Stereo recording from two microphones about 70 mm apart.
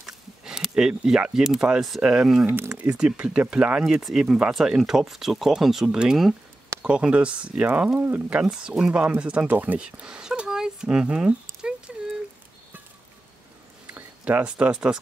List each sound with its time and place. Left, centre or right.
0.4 s speech: centre
2.4 s speech: right
2.8 s speech: centre
5.9 s speech: centre
8.5 s speech: centre
11.9 s a sound: centre
13.8 s speech: right